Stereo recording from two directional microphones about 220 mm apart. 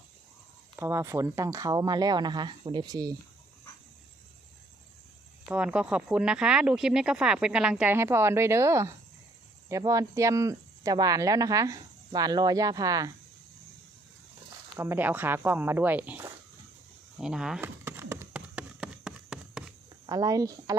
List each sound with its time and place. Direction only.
0.8 s speech: 10° right (ahead or behind)
5.5 s speech: 5° right (ahead or behind)
14.8 s speech: 10° right (ahead or behind)
17.2 s a sound: centre (ahead or behind)
20.1 s speech: 15° right (ahead or behind)